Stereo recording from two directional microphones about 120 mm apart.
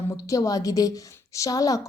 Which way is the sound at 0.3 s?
30° left (ahead or behind).